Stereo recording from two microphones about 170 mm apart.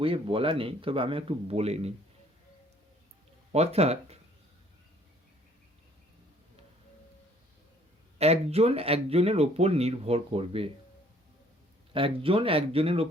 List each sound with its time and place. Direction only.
0.0 s speech: 30° right (ahead or behind)
3.5 s speech: 40° right (ahead or behind)
8.2 s speech: 35° right (ahead or behind)
11.9 s speech: 30° right (ahead or behind)